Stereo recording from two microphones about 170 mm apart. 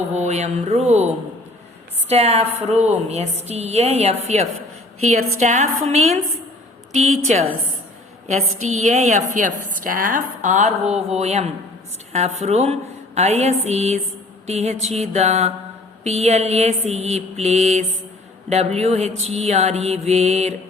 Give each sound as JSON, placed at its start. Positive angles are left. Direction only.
{"t": 0.1, "sound": "a woman's voice", "side_deg": -40}